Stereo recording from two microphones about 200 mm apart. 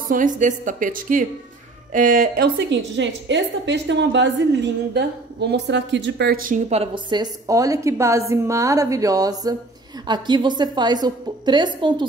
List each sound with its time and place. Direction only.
0.1 s a woman's voice: 40° right (ahead or behind); by 8.2 s 15° right (ahead or behind)
8.3 s music: 15° right (ahead or behind)
10.0 s a woman's voice: 20° right (ahead or behind)